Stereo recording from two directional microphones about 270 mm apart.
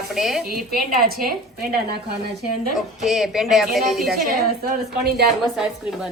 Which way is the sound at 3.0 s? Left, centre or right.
Centre.